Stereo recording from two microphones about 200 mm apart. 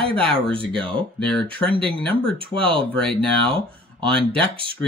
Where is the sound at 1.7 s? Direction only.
25° right (ahead or behind).